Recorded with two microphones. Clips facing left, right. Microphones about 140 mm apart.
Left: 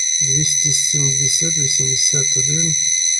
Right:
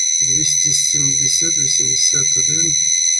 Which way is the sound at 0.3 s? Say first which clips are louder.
Left 3 dB; 50° left (ahead or behind).